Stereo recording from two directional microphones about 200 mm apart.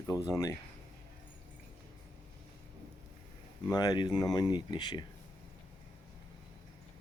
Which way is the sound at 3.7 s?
20° left (ahead or behind).